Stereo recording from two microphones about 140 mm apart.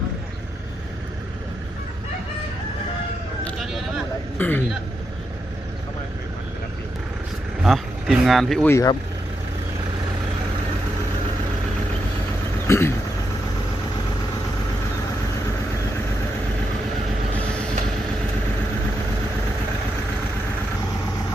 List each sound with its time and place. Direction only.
4.4 s speech: 15° left (ahead or behind)
7.6 s speech: centre (ahead or behind)
8.6 s speech: 20° left (ahead or behind)
12.6 s vehicle: 20° left (ahead or behind)